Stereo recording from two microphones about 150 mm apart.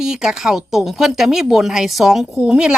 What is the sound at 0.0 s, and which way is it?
Speech, 5° right (ahead or behind).